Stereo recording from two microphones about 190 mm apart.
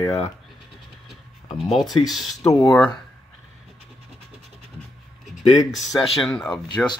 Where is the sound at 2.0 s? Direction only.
Centre (ahead or behind).